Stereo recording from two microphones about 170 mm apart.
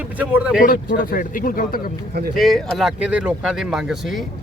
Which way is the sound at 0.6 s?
55° left (ahead or behind).